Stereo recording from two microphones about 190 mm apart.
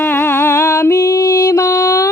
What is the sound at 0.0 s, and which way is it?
Music, 10° left (ahead or behind).